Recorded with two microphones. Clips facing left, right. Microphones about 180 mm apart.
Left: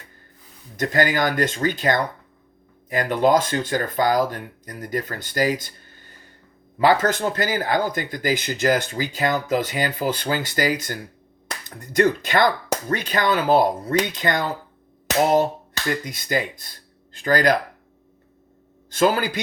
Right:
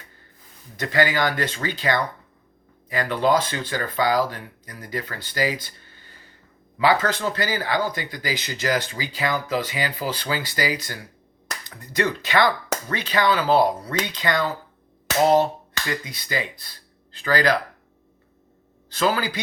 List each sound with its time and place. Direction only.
0.8 s speech: 45° left (ahead or behind)
16.0 s speech: 50° left (ahead or behind)
18.9 s speech: 50° left (ahead or behind)